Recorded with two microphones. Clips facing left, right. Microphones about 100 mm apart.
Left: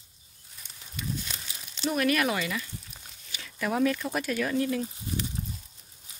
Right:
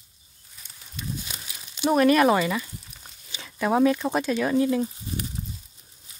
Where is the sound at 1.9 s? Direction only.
35° right (ahead or behind).